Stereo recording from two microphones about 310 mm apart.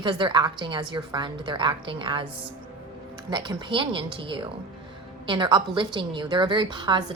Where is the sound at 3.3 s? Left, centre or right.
Centre.